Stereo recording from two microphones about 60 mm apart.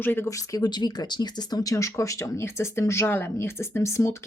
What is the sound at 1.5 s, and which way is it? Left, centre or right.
Speech, left.